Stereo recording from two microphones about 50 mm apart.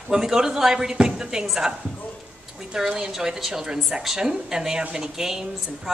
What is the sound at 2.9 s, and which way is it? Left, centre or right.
Speech, centre.